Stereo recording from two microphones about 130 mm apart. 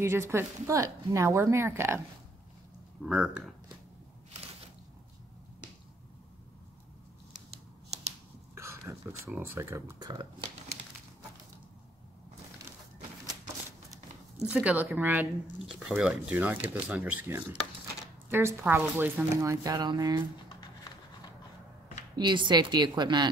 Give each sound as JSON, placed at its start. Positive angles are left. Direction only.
{"t": 0.0, "sound": "speech", "side_deg": -20}
{"t": 3.0, "sound": "speech", "side_deg": -5}
{"t": 8.5, "sound": "speech", "side_deg": -20}
{"t": 9.9, "sound": "a woman's voice", "side_deg": -30}
{"t": 14.4, "sound": "speech", "side_deg": -10}
{"t": 15.6, "sound": "speech", "side_deg": -5}
{"t": 22.1, "sound": "a woman's voice", "side_deg": -35}